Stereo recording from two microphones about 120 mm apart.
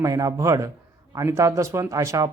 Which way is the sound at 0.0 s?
25° right (ahead or behind).